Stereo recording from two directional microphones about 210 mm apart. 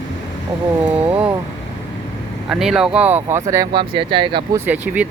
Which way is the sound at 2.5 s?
Centre (ahead or behind).